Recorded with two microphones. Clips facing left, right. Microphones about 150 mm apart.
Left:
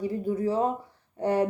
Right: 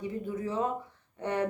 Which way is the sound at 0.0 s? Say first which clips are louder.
Left 7 dB; 35° left (ahead or behind).